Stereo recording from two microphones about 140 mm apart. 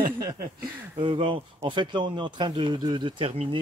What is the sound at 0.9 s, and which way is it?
Speech, 40° right (ahead or behind).